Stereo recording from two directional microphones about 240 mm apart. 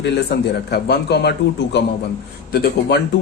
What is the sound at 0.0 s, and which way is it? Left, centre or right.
A man's voice, left.